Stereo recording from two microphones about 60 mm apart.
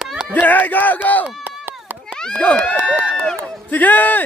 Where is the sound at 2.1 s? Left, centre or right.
Centre.